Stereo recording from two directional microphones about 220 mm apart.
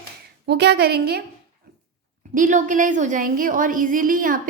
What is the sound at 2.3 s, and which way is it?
A woman's voice, 35° right (ahead or behind).